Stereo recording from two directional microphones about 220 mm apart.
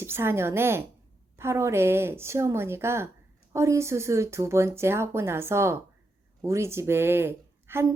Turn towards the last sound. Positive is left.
turn(degrees=-10)  # may be behind; listen again after turning